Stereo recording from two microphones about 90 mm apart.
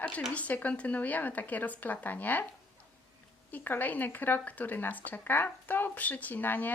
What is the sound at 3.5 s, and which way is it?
Speech, 20° left (ahead or behind).